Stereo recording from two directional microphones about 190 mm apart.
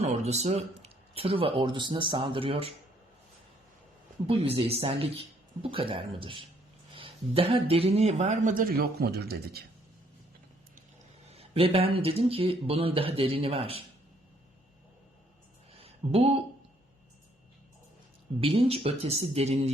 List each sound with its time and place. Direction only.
0.0 s speech: 35° right (ahead or behind)
4.3 s speech: 30° right (ahead or behind); by 9.6 s 55° right (ahead or behind)
11.3 s speech: 30° right (ahead or behind)
15.8 s a sound: 30° right (ahead or behind)
18.3 s speech: 30° right (ahead or behind)